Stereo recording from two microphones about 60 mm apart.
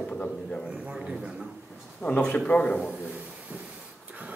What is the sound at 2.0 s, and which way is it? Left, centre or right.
Speech, left.